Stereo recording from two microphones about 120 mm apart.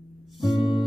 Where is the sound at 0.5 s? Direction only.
50° left (ahead or behind).